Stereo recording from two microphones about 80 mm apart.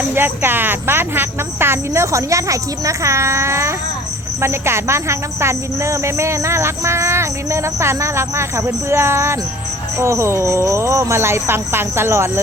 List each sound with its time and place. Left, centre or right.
0.1 s speech: right